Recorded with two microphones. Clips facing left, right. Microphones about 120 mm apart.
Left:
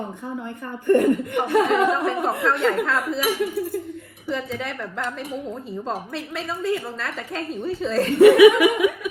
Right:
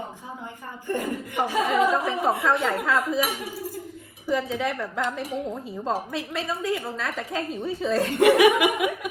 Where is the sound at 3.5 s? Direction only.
60° left (ahead or behind).